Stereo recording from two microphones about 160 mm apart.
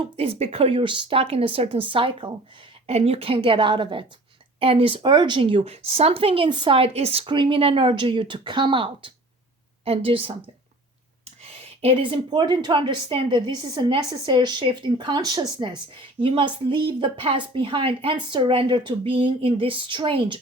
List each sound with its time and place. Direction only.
0.2 s a woman's voice: 40° right (ahead or behind)
11.8 s a woman's voice: 35° right (ahead or behind)